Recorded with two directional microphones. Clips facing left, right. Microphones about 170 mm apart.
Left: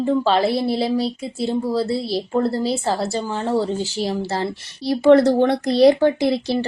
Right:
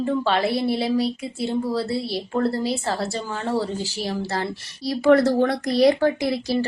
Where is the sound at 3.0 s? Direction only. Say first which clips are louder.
Left 4 dB; centre (ahead or behind).